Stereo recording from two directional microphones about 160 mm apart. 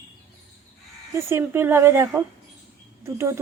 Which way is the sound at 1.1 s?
15° right (ahead or behind).